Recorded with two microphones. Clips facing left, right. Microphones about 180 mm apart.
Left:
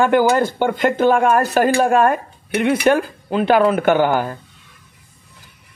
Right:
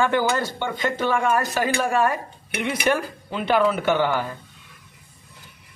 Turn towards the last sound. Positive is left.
turn(degrees=55)  # may be behind; listen again after turning